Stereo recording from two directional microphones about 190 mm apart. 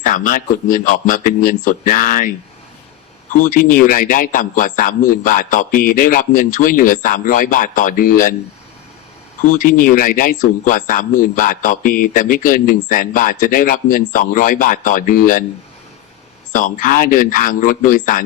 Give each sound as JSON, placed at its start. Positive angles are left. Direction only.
{"t": 0.0, "sound": "a man's voice", "side_deg": 45}
{"t": 3.4, "sound": "a man's voice", "side_deg": 45}
{"t": 9.5, "sound": "a man's voice", "side_deg": 45}
{"t": 16.5, "sound": "a man's voice", "side_deg": 45}